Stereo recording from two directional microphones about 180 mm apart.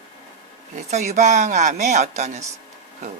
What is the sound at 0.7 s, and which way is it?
Speech, 40° right (ahead or behind).